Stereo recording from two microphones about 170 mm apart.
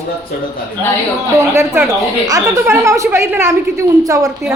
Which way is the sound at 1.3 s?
15° right (ahead or behind).